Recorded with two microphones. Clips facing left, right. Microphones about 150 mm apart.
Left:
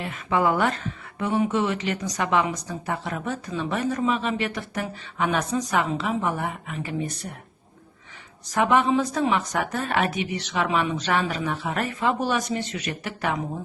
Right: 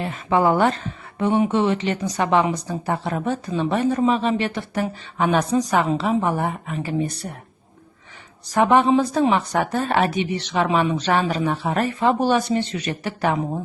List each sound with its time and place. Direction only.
0.0 s speech: 30° right (ahead or behind)
8.4 s speech: 35° right (ahead or behind)